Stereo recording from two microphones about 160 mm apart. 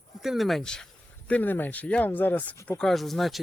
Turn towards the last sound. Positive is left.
turn(degrees=0)  # may be behind; listen again after turning